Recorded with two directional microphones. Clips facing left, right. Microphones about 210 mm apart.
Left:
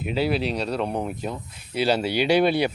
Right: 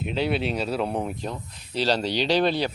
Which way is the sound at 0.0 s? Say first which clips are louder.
Left 1 dB; 5° left (ahead or behind).